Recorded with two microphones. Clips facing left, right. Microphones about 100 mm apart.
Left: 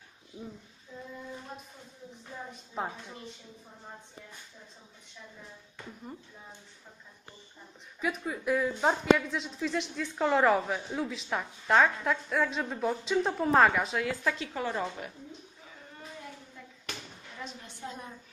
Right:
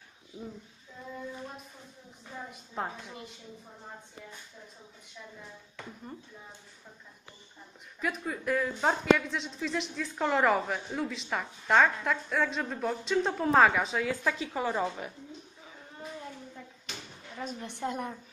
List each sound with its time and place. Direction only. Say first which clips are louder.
2.7 s a woman's voice: even; 5° left (ahead or behind)
8.0 s a woman's voice: left 1 dB; 5° left (ahead or behind)
17.6 s a woman's voice: right 8 dB; 65° right (ahead or behind)